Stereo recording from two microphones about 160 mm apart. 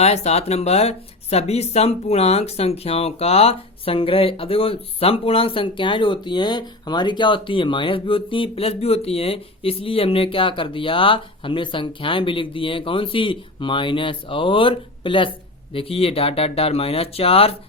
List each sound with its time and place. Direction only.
0.0 s speech: 40° left (ahead or behind)